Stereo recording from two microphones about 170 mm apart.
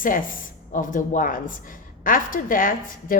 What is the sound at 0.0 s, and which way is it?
A woman's voice, 55° left (ahead or behind).